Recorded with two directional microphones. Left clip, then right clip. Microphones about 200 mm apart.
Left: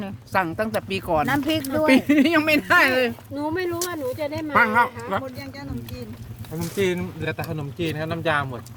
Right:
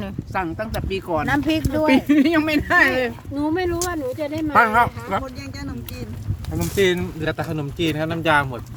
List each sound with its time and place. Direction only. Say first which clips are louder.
0.3 s speech: left 3 dB; 55° left (ahead or behind)
1.3 s speech: right 2 dB; 5° left (ahead or behind)
2.0 s speech: right 1 dB; 40° left (ahead or behind)
3.3 s speech: right 3 dB; 10° left (ahead or behind)
4.5 s speech: right 2 dB; 15° right (ahead or behind)
6.7 s speech: right 5 dB; 40° right (ahead or behind)